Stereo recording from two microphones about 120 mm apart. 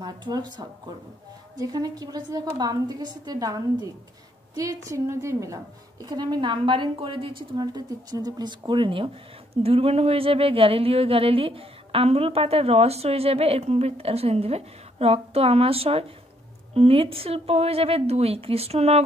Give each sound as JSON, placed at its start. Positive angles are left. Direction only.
{"t": 0.0, "sound": "a woman's voice", "side_deg": -35}